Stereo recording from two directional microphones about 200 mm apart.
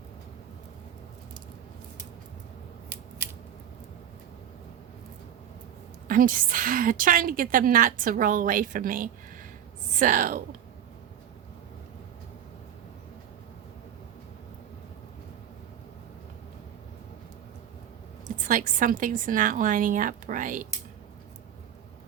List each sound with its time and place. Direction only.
6.1 s a woman's voice: 45° right (ahead or behind)
18.3 s a woman's voice: 40° right (ahead or behind)